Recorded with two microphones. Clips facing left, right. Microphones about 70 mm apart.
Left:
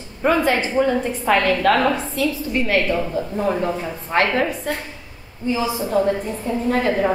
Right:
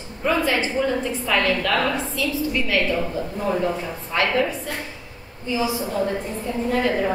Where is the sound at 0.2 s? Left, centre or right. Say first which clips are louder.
Left 3 dB; left.